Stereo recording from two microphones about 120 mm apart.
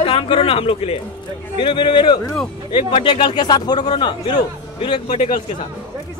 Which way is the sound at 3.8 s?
45° left (ahead or behind).